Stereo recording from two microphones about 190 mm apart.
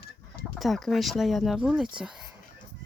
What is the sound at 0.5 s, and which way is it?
Speech, centre (ahead or behind).